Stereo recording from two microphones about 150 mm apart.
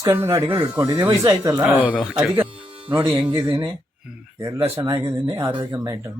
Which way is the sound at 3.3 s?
30° right (ahead or behind).